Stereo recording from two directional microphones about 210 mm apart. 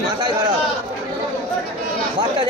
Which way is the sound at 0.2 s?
20° right (ahead or behind).